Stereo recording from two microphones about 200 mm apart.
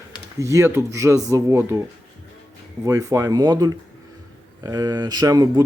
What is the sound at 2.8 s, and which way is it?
Speech, 15° right (ahead or behind).